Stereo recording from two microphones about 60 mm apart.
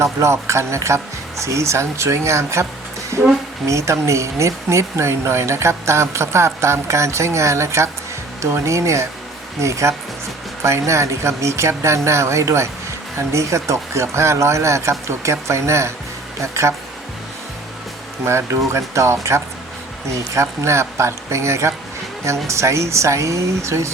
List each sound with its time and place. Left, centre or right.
0.0 s speech: right
3.7 s speech: right
18.3 s speech: right